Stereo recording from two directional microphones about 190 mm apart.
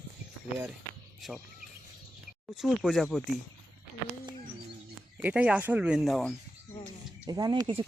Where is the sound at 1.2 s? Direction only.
Centre (ahead or behind).